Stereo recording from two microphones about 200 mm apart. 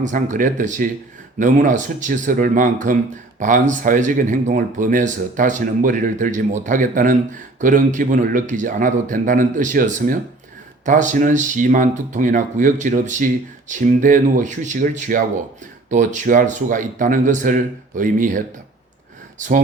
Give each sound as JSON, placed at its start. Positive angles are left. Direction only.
{"t": 0.0, "sound": "speech", "side_deg": -40}